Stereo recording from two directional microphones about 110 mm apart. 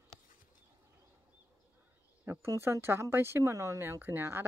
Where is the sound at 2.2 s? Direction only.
25° right (ahead or behind).